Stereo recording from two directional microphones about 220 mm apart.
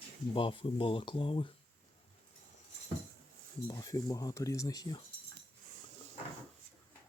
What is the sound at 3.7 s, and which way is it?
Speech, 15° left (ahead or behind).